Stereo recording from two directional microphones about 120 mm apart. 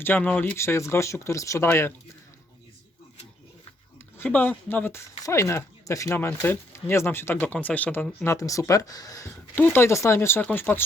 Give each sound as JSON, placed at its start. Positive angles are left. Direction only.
{"t": 0.0, "sound": "speech", "side_deg": 15}
{"t": 3.9, "sound": "speech", "side_deg": 15}
{"t": 8.2, "sound": "speech", "side_deg": 25}